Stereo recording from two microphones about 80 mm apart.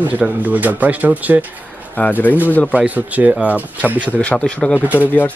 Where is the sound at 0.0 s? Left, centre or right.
Centre.